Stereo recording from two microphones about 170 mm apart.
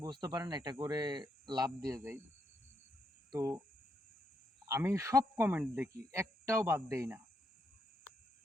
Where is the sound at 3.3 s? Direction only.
20° right (ahead or behind).